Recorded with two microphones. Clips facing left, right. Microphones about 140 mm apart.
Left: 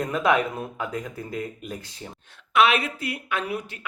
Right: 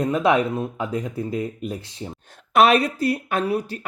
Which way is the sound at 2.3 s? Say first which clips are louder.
Right 4 dB; 40° right (ahead or behind).